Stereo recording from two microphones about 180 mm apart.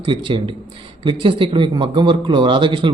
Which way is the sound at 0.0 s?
25° right (ahead or behind).